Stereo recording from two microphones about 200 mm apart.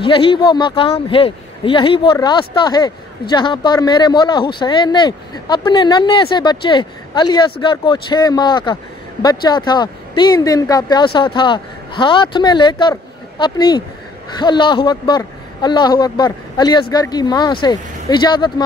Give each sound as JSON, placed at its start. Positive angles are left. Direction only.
{"t": 0.0, "sound": "speech", "side_deg": 25}